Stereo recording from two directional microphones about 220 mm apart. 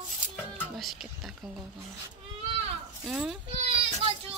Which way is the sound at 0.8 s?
Centre (ahead or behind).